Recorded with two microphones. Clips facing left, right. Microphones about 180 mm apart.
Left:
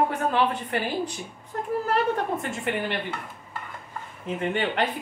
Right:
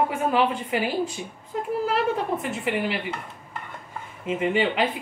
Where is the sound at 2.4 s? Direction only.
5° right (ahead or behind).